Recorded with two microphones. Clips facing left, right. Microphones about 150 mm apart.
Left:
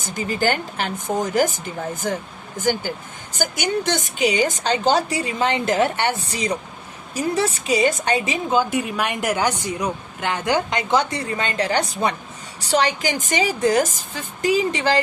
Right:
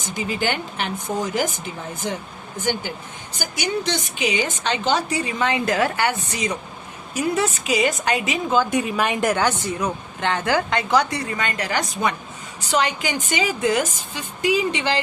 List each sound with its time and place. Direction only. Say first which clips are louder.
0.0 s speech: left 2 dB; 45° left (ahead or behind)
2.6 s a woman's voice: left 3 dB; 40° left (ahead or behind)
8.7 s a woman's voice: right 2 dB; centre (ahead or behind); by 11.0 s 20° left (ahead or behind)
11.3 s a woman's voice: left 3 dB; 30° left (ahead or behind)